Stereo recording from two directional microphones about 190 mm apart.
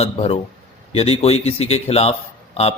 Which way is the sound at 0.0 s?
30° left (ahead or behind).